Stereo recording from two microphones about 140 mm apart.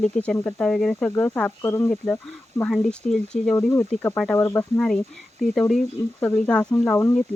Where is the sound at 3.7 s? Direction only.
15° left (ahead or behind).